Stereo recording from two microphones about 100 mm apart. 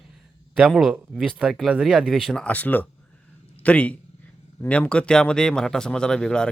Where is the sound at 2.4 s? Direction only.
15° left (ahead or behind).